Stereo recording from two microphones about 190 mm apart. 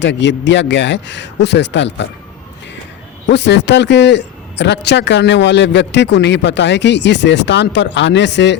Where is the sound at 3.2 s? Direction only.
65° left (ahead or behind).